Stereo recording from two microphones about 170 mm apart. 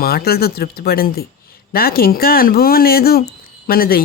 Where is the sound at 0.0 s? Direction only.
65° left (ahead or behind).